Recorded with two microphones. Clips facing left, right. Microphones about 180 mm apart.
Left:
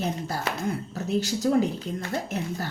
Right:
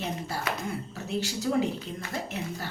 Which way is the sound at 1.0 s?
40° left (ahead or behind).